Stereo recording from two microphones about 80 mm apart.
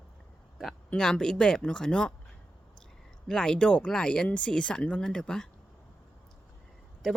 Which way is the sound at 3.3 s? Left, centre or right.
Centre.